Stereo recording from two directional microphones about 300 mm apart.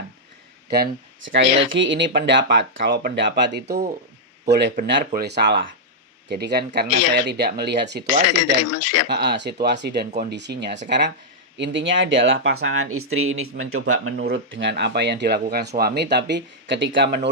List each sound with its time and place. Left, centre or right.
0.7 s speech: right
8.1 s speech: left
9.0 s speech: right